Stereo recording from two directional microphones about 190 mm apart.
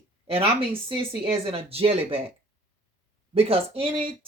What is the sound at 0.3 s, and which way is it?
Speech, 30° right (ahead or behind).